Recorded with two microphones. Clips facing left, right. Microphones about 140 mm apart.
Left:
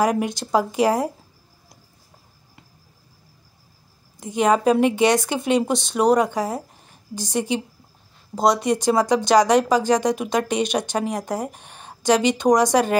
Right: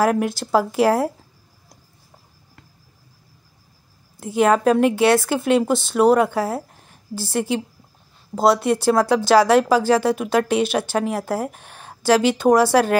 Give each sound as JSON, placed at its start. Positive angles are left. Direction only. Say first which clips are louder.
{"t": 0.0, "sound": "speech", "louder": "right 2 dB", "side_deg": 0}
{"t": 4.2, "sound": "a woman's voice", "louder": "right 2 dB", "side_deg": -5}